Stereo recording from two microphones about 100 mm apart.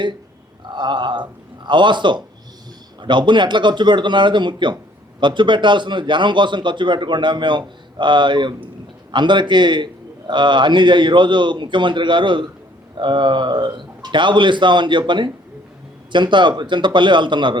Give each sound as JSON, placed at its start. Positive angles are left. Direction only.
{"t": 0.7, "sound": "a man's voice", "side_deg": -50}